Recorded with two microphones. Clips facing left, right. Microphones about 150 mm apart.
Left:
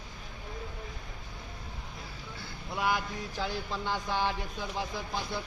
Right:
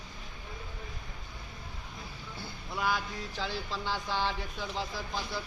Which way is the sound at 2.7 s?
15° left (ahead or behind).